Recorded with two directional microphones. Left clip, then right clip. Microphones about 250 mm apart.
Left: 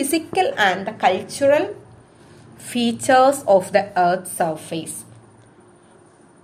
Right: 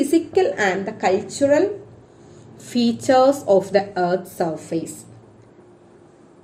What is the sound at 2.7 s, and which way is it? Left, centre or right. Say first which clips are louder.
A woman's voice: left 1 dB; left.